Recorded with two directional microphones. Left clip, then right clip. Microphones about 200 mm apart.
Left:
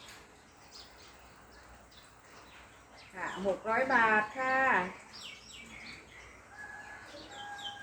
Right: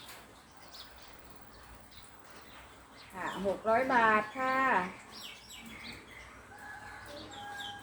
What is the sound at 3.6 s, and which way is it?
Speech, 25° left (ahead or behind).